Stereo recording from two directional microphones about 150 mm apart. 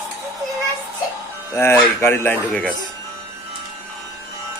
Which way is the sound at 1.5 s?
15° left (ahead or behind).